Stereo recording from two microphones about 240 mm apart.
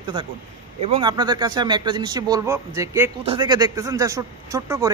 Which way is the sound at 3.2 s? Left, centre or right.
Right.